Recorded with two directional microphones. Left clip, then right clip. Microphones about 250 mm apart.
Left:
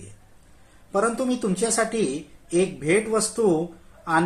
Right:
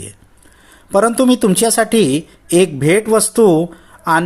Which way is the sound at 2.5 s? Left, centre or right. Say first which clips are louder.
Right 10 dB; right.